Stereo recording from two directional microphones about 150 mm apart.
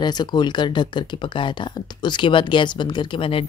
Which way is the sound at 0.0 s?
30° left (ahead or behind).